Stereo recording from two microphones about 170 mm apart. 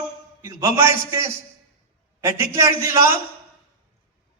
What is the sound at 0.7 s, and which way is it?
A man's voice, 15° right (ahead or behind).